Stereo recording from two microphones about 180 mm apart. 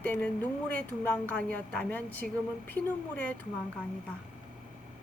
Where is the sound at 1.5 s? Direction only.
10° left (ahead or behind).